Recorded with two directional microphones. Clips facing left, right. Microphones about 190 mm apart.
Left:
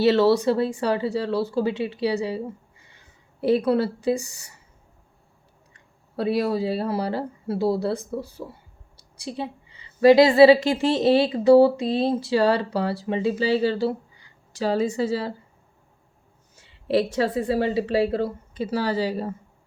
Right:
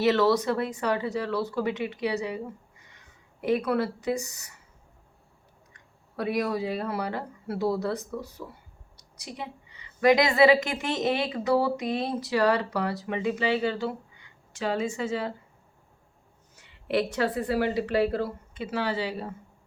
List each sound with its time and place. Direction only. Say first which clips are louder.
0.0 s speech: left 4 dB; 30° left (ahead or behind)
5.7 s a woman's voice: left 5 dB; 30° left (ahead or behind)
16.6 s speech: left 5 dB; 30° left (ahead or behind)
18.6 s a woman's voice: left 5 dB; 40° left (ahead or behind)